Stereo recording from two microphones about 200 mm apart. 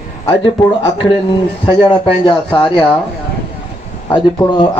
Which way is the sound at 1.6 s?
25° left (ahead or behind).